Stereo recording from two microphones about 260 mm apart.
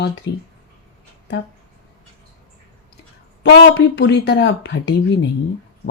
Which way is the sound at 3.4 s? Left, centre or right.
Left.